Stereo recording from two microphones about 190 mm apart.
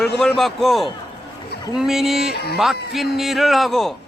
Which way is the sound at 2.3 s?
55° left (ahead or behind).